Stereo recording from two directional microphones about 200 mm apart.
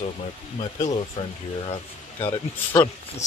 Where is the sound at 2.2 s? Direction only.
25° left (ahead or behind).